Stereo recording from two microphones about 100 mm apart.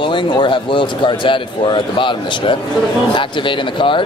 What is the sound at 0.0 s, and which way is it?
A man's voice, 55° left (ahead or behind).